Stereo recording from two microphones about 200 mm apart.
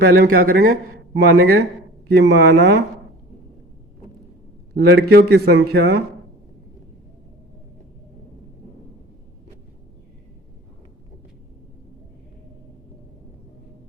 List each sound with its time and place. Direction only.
0.2 s a man's voice: 45° right (ahead or behind)
4.7 s a man's voice: 55° right (ahead or behind)